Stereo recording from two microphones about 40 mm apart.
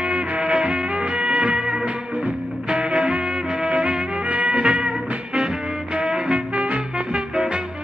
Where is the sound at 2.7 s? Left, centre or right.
Right.